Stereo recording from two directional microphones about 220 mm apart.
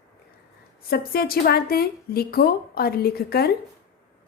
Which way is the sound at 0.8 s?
45° left (ahead or behind).